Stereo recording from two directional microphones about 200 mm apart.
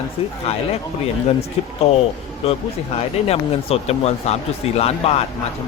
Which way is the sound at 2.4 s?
30° left (ahead or behind).